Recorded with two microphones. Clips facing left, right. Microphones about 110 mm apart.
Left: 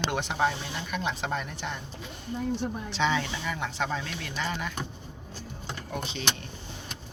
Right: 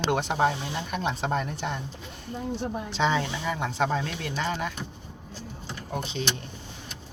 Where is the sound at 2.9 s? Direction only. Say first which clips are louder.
Right 2 dB; 35° right (ahead or behind).